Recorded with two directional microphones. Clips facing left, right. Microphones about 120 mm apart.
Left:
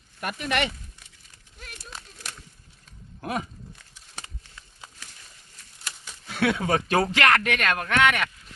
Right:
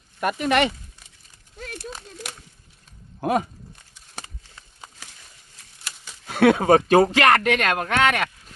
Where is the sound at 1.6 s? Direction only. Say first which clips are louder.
Right 10 dB; 90° right.